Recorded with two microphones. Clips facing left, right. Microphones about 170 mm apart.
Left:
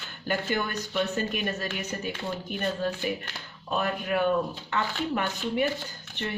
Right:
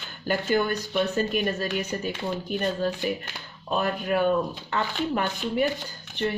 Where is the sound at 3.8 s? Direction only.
35° right (ahead or behind).